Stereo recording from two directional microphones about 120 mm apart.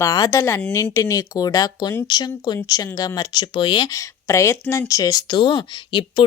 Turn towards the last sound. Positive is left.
turn(degrees=40)  # may be behind; listen again after turning